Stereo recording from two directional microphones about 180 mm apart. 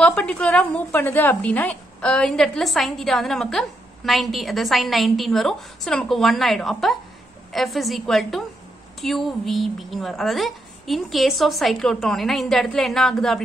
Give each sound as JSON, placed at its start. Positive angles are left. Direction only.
{"t": 0.0, "sound": "a woman's voice", "side_deg": 5}